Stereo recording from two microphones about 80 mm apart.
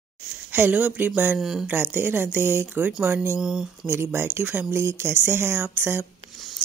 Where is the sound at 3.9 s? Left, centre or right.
Right.